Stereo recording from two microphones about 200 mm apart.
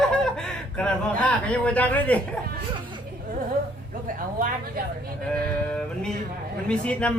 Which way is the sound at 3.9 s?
45° right (ahead or behind).